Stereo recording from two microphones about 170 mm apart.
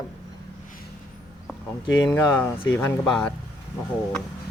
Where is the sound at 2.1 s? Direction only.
15° left (ahead or behind).